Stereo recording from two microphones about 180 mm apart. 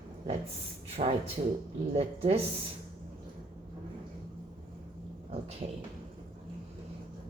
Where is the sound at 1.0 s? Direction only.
35° right (ahead or behind).